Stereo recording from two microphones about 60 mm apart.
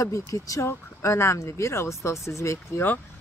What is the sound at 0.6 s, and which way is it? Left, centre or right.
Speech, left.